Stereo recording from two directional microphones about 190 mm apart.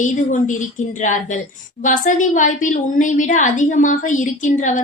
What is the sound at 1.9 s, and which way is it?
A woman's voice, 45° left (ahead or behind).